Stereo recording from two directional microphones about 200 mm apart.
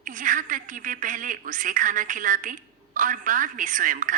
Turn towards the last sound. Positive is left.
turn(degrees=-40)  # may be behind; listen again after turning